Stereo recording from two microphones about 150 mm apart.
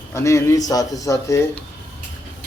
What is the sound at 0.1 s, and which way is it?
Speech, 20° left (ahead or behind).